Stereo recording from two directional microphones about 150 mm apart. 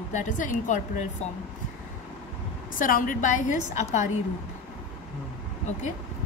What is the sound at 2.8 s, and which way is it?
A woman's voice, 65° left (ahead or behind).